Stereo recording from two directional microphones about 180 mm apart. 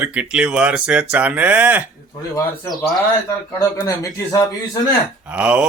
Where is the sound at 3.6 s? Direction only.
20° left (ahead or behind).